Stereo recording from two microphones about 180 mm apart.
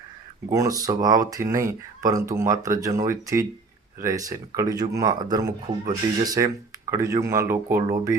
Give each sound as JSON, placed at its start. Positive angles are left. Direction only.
{"t": 0.5, "sound": "speech", "side_deg": -20}